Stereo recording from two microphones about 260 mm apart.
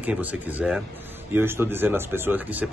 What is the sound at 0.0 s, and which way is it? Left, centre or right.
Speech, centre.